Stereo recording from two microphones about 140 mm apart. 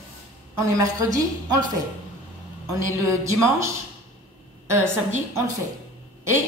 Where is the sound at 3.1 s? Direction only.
20° right (ahead or behind).